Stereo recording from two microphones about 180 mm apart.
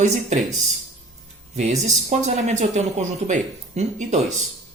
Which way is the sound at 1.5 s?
40° right (ahead or behind).